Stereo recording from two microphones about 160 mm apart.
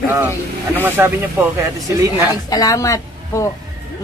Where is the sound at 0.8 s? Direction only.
15° right (ahead or behind).